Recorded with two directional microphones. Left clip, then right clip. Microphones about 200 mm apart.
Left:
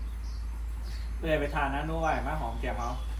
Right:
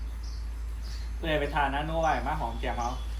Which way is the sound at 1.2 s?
15° right (ahead or behind).